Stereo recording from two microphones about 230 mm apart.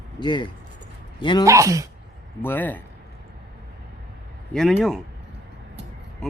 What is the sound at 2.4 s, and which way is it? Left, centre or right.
Speech, centre.